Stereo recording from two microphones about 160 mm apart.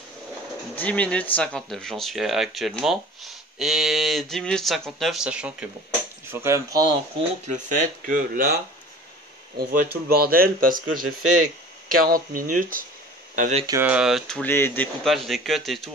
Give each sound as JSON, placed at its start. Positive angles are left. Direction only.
{"t": 0.7, "sound": "speech", "side_deg": 10}
{"t": 6.3, "sound": "speech", "side_deg": -15}
{"t": 7.4, "sound": "speech", "side_deg": -50}
{"t": 9.6, "sound": "speech", "side_deg": -70}
{"t": 12.0, "sound": "speech", "side_deg": -60}
{"t": 13.4, "sound": "speech", "side_deg": -45}
{"t": 13.7, "sound": "speech", "side_deg": -10}
{"t": 14.5, "sound": "speech", "side_deg": 15}
{"t": 15.0, "sound": "speech", "side_deg": 0}